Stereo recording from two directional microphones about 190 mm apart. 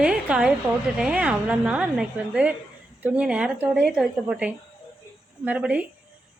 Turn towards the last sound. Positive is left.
turn(degrees=-5)  # may be behind; listen again after turning